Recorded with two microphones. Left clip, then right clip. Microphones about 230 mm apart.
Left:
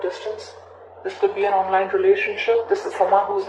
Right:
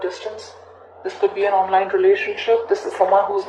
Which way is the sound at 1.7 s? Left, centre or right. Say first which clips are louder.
Right 2 dB; right.